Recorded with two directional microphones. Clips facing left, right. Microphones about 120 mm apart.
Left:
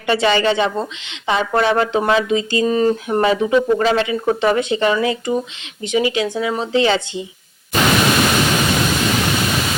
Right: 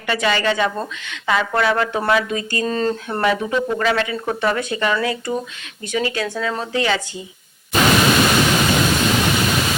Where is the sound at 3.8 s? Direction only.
25° left (ahead or behind).